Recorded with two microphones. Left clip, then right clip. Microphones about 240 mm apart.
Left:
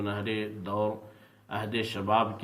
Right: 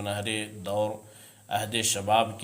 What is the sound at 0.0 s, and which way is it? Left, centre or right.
Speech, right.